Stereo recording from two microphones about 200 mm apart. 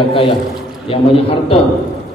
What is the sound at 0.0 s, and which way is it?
A woman's voice, 25° left (ahead or behind).